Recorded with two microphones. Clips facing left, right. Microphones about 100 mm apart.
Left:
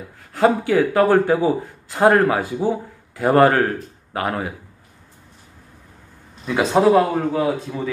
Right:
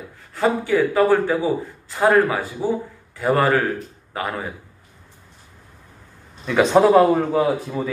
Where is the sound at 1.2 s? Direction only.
45° left (ahead or behind).